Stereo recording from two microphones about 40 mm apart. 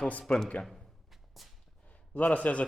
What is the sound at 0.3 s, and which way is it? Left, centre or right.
Speech, left.